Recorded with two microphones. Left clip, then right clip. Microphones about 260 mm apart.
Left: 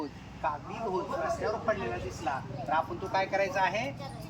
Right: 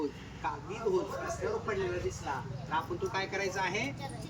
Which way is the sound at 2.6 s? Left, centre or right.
Centre.